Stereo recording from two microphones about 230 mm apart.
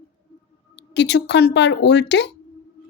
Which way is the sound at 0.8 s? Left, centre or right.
Left.